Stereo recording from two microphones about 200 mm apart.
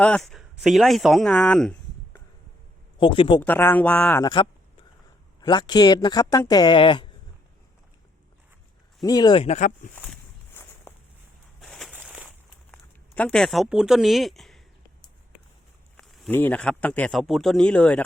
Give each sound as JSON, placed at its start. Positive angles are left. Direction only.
{"t": 0.0, "sound": "speech", "side_deg": 5}
{"t": 3.0, "sound": "speech", "side_deg": 25}
{"t": 3.4, "sound": "speech", "side_deg": 10}
{"t": 4.2, "sound": "speech", "side_deg": 20}
{"t": 9.0, "sound": "speech", "side_deg": 20}
{"t": 9.9, "sound": "walk", "side_deg": 10}
{"t": 11.6, "sound": "a sound", "side_deg": 0}
{"t": 12.7, "sound": "speech", "side_deg": 5}
{"t": 16.0, "sound": "speech", "side_deg": 0}